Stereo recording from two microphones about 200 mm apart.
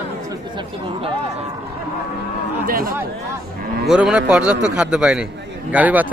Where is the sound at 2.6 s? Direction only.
45° right (ahead or behind).